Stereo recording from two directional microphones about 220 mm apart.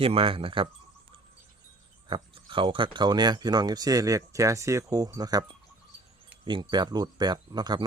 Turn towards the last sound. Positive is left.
turn(degrees=-20)  # may be behind; listen again after turning